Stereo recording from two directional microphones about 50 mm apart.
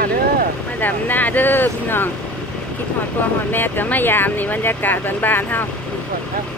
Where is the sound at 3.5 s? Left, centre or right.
Left.